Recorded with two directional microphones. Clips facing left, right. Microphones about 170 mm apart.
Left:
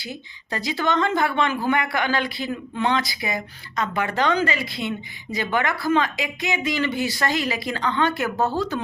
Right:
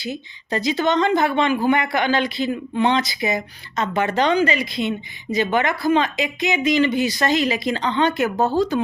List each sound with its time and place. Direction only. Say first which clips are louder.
0.0 s speech: right 6 dB; 20° right (ahead or behind)